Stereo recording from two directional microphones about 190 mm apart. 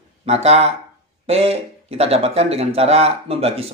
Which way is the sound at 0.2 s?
35° right (ahead or behind).